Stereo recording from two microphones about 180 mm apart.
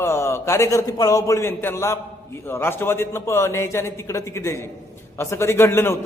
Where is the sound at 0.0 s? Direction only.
15° left (ahead or behind).